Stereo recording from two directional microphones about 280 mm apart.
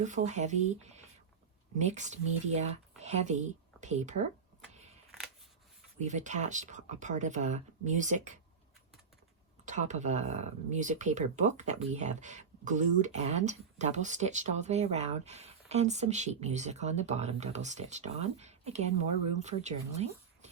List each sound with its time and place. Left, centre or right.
0.0 s speech: right
6.0 s speech: right
9.6 s speech: right